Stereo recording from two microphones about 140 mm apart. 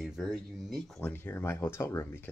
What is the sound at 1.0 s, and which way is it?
Speech, 15° left (ahead or behind).